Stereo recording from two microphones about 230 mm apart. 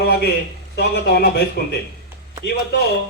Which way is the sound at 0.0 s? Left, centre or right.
Left.